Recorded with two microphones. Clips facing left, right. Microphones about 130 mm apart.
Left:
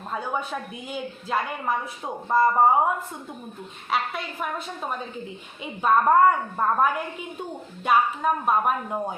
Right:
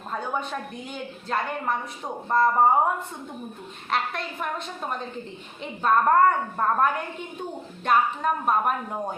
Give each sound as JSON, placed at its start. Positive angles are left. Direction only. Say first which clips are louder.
{"t": 0.1, "sound": "a woman's voice", "louder": "even", "side_deg": 5}
{"t": 3.9, "sound": "a woman's voice", "louder": "even", "side_deg": 5}